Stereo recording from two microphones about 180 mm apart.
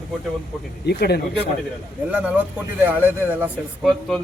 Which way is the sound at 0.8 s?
65° left (ahead or behind).